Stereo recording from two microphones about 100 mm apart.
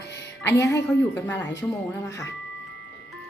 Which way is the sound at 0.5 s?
30° left (ahead or behind).